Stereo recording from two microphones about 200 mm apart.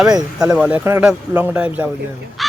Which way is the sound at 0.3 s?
5° right (ahead or behind).